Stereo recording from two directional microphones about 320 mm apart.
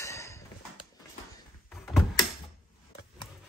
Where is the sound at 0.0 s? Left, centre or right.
Centre.